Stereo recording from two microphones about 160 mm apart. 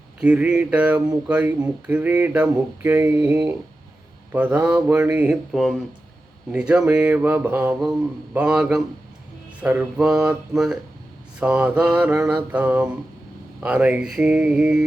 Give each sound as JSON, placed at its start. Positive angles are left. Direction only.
{"t": 0.2, "sound": "speech", "side_deg": -5}
{"t": 7.8, "sound": "mantra", "side_deg": -5}
{"t": 11.3, "sound": "speech", "side_deg": -5}
{"t": 13.6, "sound": "mantra", "side_deg": -10}